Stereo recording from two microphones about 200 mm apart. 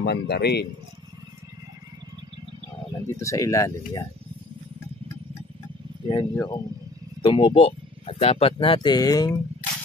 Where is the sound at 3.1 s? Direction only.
15° left (ahead or behind).